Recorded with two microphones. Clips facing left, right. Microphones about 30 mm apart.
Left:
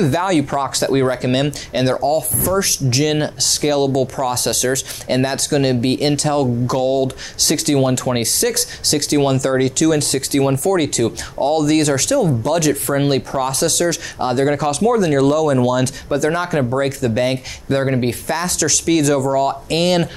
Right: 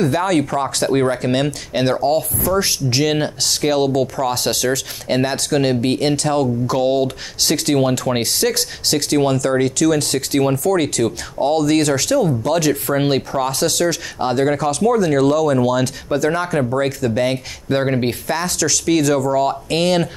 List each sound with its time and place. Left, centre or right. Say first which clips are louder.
0.0 s speech: even; centre
2.0 s speech: even; right
5.0 s speech: even; centre
6.8 s speech: right 1 dB; centre
9.3 s speech: even; centre
16.7 s speech: even; centre
17.7 s speech: even; centre